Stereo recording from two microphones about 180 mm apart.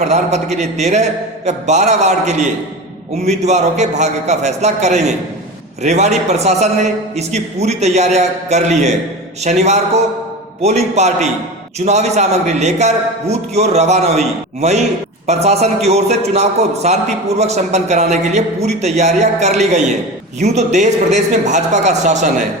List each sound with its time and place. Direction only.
0.0 s a man's voice: 40° right (ahead or behind)